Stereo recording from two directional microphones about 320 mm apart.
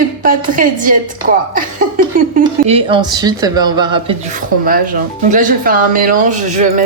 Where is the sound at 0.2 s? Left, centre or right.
Right.